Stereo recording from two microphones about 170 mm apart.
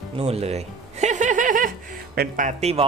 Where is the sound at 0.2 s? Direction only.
40° right (ahead or behind).